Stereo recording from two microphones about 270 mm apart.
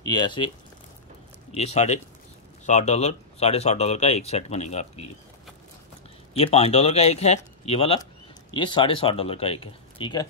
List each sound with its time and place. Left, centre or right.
0.0 s speech: centre
1.5 s speech: left
6.3 s speech: left